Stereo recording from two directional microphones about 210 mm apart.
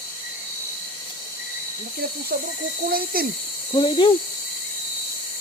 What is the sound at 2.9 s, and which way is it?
Speech, 45° right (ahead or behind).